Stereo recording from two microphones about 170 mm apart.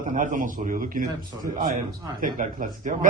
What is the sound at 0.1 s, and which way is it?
A man's voice, 50° right (ahead or behind).